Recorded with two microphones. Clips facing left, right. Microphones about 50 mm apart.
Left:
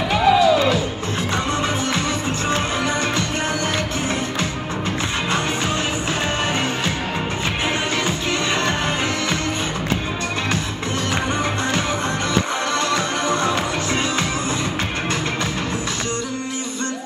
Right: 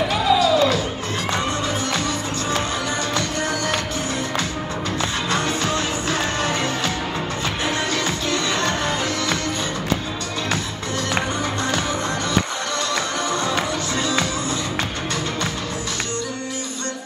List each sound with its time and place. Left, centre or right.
0.1 s music: left
8.3 s music: left